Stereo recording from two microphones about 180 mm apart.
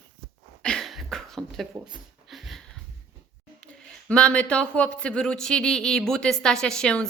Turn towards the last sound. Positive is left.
turn(degrees=5)  # may be behind; listen again after turning